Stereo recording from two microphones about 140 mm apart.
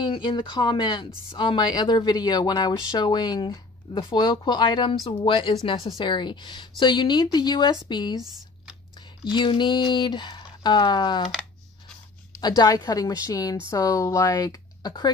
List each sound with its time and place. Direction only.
0.0 s speech: 35° left (ahead or behind)
9.2 s speech: 35° left (ahead or behind)
12.4 s speech: 30° left (ahead or behind)